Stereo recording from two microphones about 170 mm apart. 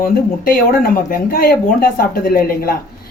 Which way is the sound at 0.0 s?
60° left (ahead or behind).